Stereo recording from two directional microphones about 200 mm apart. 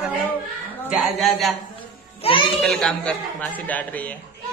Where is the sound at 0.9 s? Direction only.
Centre (ahead or behind).